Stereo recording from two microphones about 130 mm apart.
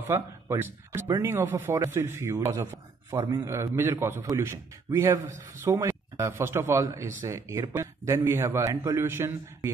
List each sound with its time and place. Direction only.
0.1 s a man's voice: 20° right (ahead or behind)